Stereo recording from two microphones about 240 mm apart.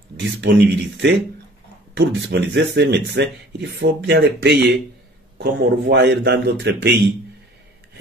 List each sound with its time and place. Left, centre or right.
0.2 s speech: right